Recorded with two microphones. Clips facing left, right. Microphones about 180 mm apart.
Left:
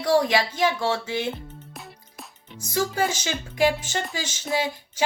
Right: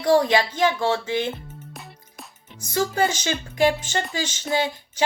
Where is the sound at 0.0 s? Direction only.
10° left (ahead or behind).